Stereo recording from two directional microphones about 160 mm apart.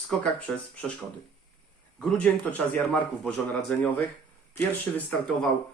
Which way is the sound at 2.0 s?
5° left (ahead or behind).